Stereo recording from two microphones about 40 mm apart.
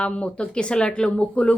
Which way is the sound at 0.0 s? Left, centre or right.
Left.